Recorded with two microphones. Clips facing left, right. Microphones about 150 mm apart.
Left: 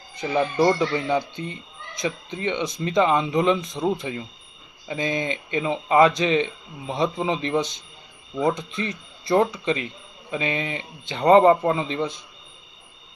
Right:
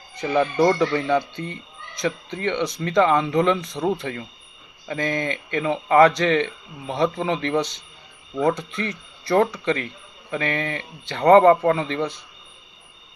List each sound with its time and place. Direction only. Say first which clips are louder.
0.2 s speech: right 2 dB; 20° left (ahead or behind)